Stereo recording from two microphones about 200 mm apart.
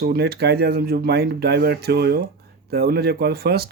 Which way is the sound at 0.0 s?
55° right (ahead or behind).